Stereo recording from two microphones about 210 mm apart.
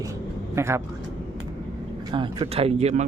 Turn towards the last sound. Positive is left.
turn(degrees=-35)  # may be behind; listen again after turning